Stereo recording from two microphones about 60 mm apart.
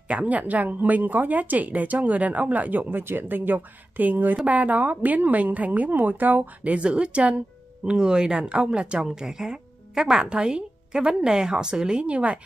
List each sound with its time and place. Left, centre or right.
0.1 s a woman's voice: right